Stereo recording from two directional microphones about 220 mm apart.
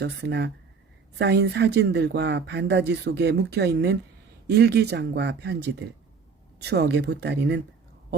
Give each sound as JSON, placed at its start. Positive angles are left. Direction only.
{"t": 0.0, "sound": "speech", "side_deg": -50}